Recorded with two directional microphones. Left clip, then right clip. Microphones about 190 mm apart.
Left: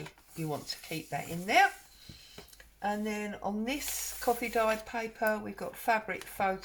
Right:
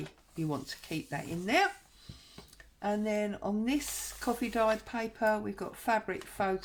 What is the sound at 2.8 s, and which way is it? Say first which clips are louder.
Speech: right 1 dB; 40° right (ahead or behind).